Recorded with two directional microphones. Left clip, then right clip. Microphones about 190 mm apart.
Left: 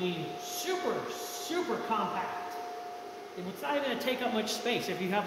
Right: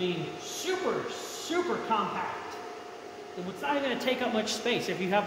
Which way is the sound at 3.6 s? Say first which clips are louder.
Right 2 dB; 15° right (ahead or behind).